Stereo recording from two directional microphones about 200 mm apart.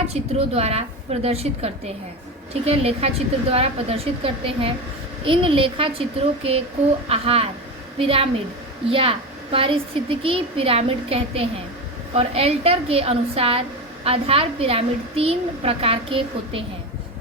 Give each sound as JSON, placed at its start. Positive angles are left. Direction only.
{"t": 0.1, "sound": "a woman's voice", "side_deg": -30}